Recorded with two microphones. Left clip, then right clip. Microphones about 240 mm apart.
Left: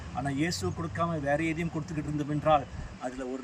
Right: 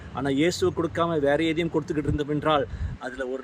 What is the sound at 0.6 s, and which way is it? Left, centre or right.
Speech, right.